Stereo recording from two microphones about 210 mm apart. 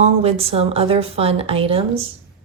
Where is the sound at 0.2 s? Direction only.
30° right (ahead or behind).